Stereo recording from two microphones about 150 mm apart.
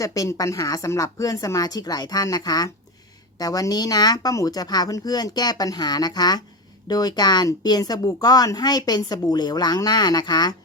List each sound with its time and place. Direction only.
0.0 s speech: 20° left (ahead or behind)